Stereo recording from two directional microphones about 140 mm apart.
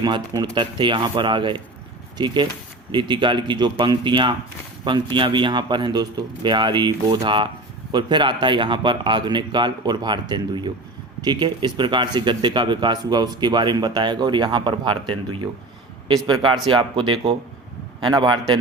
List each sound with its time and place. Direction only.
0.0 s speech: 30° right (ahead or behind)